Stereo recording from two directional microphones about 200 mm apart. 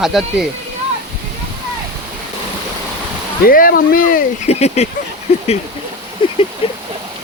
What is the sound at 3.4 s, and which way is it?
Speech, 45° left (ahead or behind).